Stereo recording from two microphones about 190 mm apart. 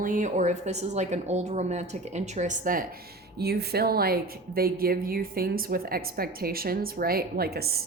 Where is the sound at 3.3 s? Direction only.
55° right (ahead or behind).